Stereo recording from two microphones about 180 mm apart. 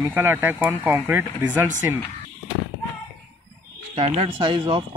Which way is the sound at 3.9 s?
35° right (ahead or behind).